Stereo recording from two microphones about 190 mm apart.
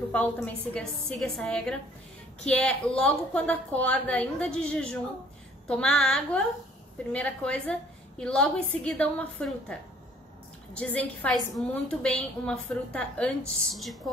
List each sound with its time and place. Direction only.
0.1 s a woman's voice: 5° left (ahead or behind)